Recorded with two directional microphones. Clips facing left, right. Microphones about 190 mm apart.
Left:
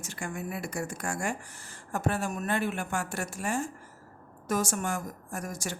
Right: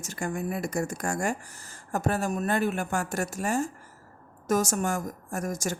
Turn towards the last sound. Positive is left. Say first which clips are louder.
# right 5 dB
turn(degrees=-45)  # may be behind; listen again after turning